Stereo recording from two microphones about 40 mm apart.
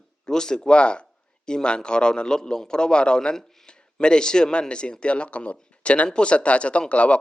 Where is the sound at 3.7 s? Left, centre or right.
Left.